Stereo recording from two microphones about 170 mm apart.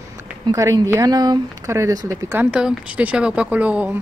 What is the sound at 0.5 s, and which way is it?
Speech, 20° right (ahead or behind).